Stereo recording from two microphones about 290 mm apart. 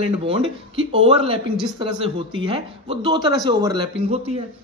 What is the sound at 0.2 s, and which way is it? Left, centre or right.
A man's voice, centre.